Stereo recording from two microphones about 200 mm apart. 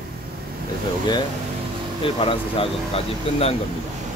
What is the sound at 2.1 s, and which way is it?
Speech, 25° left (ahead or behind).